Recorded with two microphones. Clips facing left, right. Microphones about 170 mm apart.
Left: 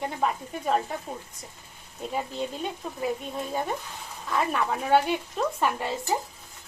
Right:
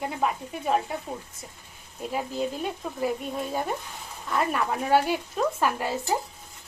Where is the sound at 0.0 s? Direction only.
5° right (ahead or behind).